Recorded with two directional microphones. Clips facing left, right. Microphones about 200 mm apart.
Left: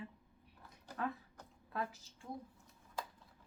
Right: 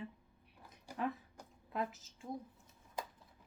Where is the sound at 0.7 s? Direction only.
20° right (ahead or behind).